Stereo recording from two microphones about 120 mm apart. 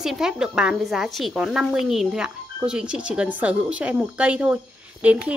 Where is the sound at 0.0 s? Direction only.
5° right (ahead or behind).